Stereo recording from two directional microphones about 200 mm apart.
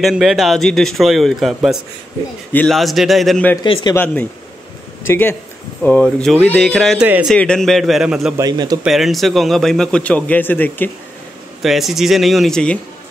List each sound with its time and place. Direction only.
0.0 s a man's voice: centre (ahead or behind)
3.6 s speech: 25° left (ahead or behind)
3.9 s a man's voice: 10° left (ahead or behind); by 7.3 s 5° right (ahead or behind)
7.3 s a man's voice: 5° left (ahead or behind)
8.4 s a man's voice: 20° right (ahead or behind)
8.8 s a man's voice: centre (ahead or behind)
11.6 s a man's voice: centre (ahead or behind)